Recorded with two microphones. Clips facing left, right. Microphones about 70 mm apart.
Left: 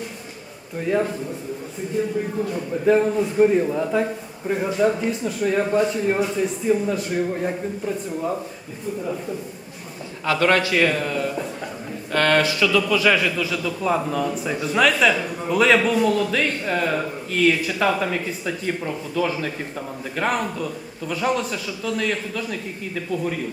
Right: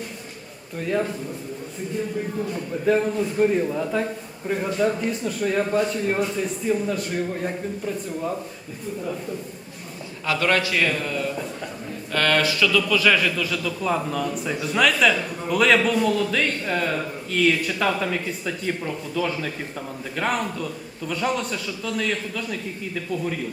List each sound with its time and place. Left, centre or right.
0.8 s a man's voice: centre
2.5 s a man's voice: centre
10.4 s a man's voice: left
12.1 s a man's voice: centre